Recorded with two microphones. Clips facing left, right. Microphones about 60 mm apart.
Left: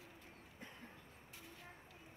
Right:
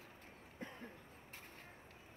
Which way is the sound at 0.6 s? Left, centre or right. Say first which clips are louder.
Right 6 dB; right.